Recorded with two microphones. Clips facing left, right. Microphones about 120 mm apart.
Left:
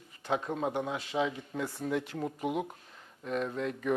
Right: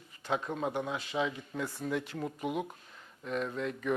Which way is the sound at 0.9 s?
40° left (ahead or behind).